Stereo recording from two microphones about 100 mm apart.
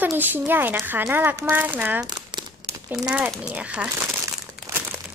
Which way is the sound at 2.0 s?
45° right (ahead or behind).